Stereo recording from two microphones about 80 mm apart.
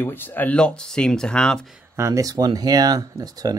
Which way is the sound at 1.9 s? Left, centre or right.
Right.